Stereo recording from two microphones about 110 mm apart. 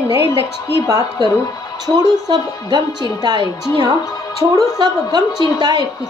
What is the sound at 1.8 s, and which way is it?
A woman's voice, 35° right (ahead or behind).